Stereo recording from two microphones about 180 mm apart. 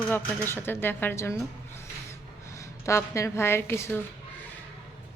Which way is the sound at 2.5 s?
15° left (ahead or behind).